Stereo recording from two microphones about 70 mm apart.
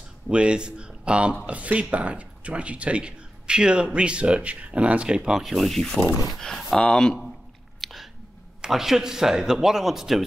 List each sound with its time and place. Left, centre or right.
0.3 s speech: centre
7.8 s a sound: centre
8.5 s speech: centre